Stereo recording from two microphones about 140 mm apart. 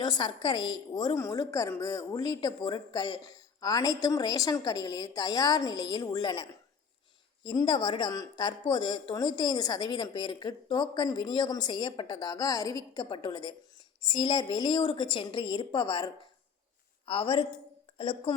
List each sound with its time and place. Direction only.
0.0 s a woman's voice: 30° left (ahead or behind)
17.1 s a woman's voice: 40° left (ahead or behind)